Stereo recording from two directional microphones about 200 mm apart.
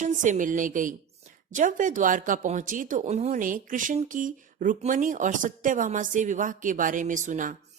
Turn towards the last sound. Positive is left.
turn(degrees=-40)  # may be behind; listen again after turning